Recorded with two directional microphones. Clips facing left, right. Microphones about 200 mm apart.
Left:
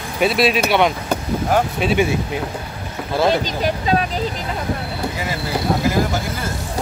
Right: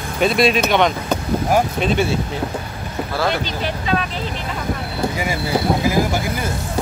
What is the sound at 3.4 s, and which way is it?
Speech, 40° left (ahead or behind).